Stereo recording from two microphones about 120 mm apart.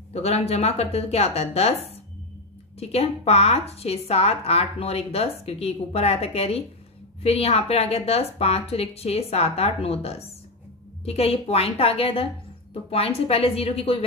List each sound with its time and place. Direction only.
0.1 s a woman's voice: 60° left (ahead or behind)
2.8 s a woman's voice: 60° left (ahead or behind)